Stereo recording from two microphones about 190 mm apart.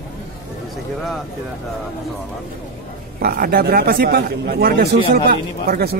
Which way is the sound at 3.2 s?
55° right (ahead or behind).